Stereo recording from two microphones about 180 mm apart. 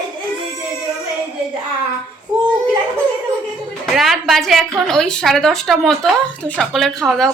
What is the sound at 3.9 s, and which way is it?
A woman's voice, centre (ahead or behind).